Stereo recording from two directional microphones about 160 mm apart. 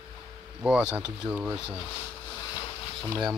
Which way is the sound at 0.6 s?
5° right (ahead or behind).